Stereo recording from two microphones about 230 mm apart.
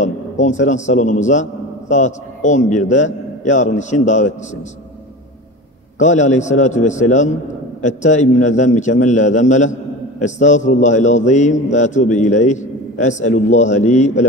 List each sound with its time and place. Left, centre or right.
0.0 s a man's voice: left
5.9 s a man's voice: left